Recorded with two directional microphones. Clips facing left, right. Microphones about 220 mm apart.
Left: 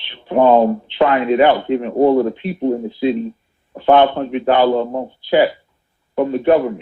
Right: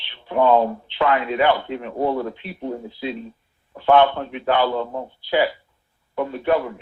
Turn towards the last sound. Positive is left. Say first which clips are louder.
# left 7 dB
turn(degrees=25)  # may be behind; listen again after turning